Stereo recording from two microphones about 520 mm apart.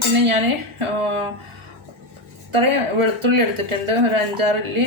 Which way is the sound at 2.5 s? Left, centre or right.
Right.